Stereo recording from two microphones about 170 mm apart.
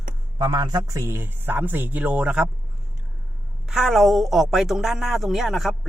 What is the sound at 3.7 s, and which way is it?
A woman's voice, centre (ahead or behind).